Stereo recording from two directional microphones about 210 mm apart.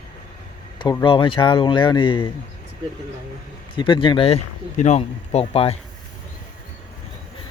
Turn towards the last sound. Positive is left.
turn(degrees=30)  # may be behind; listen again after turning